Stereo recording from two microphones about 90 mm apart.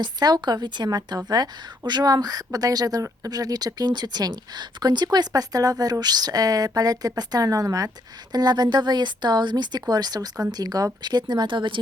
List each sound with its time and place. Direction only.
0.0 s speech: 50° right (ahead or behind)